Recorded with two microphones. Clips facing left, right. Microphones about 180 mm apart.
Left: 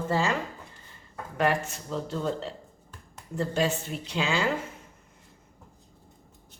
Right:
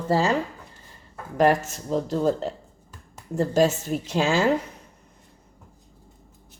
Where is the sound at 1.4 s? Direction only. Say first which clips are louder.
Right 6 dB; 40° right (ahead or behind).